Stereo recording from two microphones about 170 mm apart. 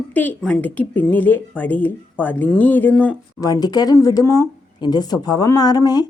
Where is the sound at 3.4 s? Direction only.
25° left (ahead or behind).